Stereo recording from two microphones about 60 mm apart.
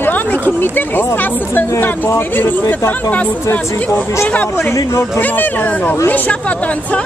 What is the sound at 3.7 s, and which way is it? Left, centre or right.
Speech, left.